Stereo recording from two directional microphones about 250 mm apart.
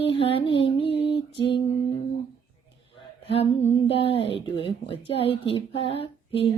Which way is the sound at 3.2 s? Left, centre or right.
Left.